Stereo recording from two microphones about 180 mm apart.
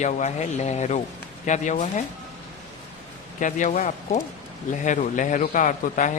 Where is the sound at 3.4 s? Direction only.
45° left (ahead or behind).